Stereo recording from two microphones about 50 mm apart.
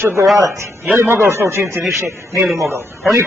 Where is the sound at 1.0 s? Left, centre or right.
Right.